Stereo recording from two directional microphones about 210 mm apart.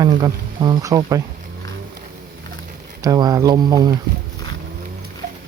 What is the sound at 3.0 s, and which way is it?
Speech, 20° right (ahead or behind).